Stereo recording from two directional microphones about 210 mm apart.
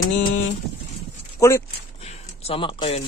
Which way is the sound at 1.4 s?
15° left (ahead or behind).